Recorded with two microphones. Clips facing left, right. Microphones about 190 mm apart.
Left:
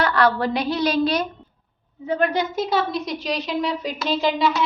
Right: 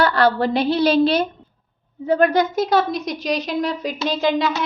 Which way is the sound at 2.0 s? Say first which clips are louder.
Right 5 dB; 40° right (ahead or behind).